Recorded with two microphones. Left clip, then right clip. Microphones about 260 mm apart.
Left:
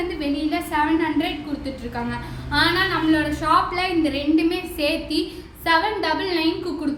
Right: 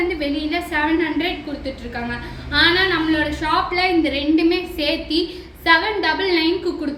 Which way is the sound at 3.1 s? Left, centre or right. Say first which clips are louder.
Left 1 dB; centre.